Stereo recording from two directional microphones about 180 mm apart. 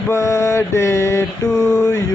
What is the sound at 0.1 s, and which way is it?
Mantra, 15° left (ahead or behind).